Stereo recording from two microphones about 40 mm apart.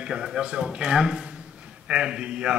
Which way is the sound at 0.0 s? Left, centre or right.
Centre.